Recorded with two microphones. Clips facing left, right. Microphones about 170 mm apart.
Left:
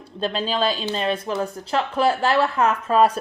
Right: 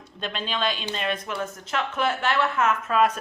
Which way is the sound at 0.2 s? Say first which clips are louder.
Left 6 dB; 35° left (ahead or behind).